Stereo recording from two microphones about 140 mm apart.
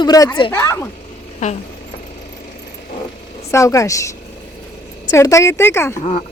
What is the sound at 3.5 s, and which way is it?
Speech, 20° left (ahead or behind).